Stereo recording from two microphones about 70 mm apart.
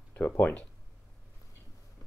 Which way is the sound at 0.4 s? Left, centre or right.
Left.